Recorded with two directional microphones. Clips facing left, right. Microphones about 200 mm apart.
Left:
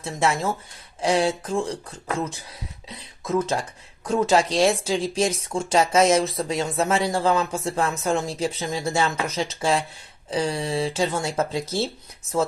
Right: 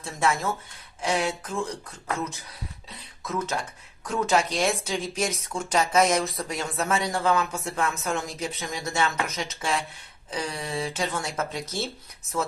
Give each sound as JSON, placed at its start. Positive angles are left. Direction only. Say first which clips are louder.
{"t": 0.0, "sound": "speech", "louder": "left 3 dB", "side_deg": 25}